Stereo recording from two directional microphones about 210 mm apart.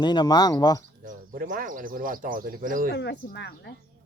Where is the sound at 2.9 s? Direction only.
55° left (ahead or behind).